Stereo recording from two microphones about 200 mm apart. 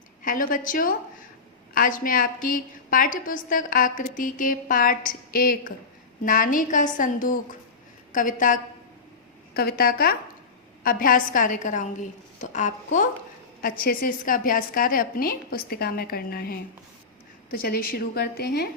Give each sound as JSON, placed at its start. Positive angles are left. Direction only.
{"t": 0.2, "sound": "a woman's voice", "side_deg": 45}
{"t": 9.6, "sound": "a woman's voice", "side_deg": 50}